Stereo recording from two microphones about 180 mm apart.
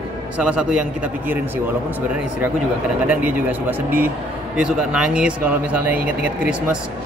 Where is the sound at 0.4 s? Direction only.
5° right (ahead or behind).